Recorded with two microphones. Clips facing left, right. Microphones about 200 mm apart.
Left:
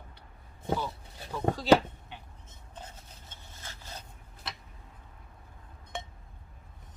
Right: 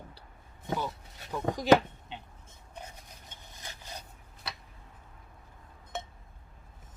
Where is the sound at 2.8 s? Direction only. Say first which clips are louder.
Right 1 dB; 15° right (ahead or behind).